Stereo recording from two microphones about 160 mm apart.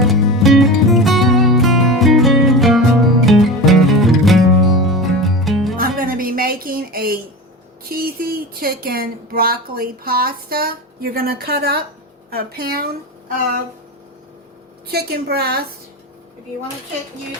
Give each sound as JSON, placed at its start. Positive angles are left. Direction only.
{"t": 0.0, "sound": "music", "side_deg": 0}
{"t": 5.7, "sound": "music", "side_deg": -65}
{"t": 7.9, "sound": "a woman's voice", "side_deg": -65}
{"t": 14.8, "sound": "a woman's voice", "side_deg": -75}